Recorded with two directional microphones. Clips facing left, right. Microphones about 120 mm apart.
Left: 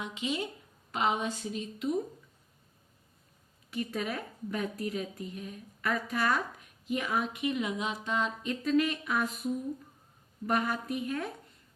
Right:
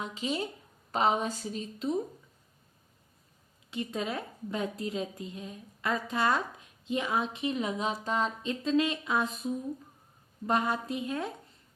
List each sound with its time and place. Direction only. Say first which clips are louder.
0.0 s a woman's voice: right 1 dB; 35° right (ahead or behind)
3.7 s a woman's voice: even; 25° right (ahead or behind)